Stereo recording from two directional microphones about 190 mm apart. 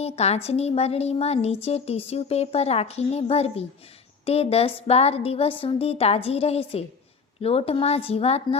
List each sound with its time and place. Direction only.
0.0 s a woman's voice: 35° left (ahead or behind)